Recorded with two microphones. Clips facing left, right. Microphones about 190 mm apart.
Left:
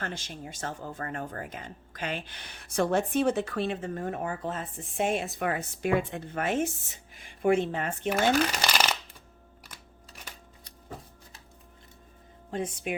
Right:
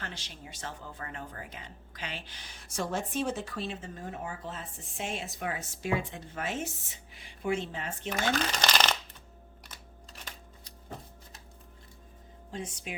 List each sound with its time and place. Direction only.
0.0 s speech: 50° left (ahead or behind)
8.1 s speech: 10° left (ahead or behind)
12.5 s speech: 60° left (ahead or behind)